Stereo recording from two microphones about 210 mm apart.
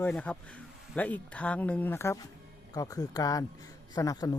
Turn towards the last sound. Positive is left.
turn(degrees=15)  # may be behind; listen again after turning